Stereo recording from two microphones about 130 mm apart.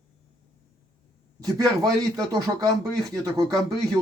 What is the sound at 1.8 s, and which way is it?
Speech, 25° right (ahead or behind).